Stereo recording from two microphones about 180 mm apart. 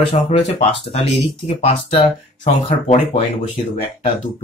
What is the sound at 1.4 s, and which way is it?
Speech, 35° left (ahead or behind).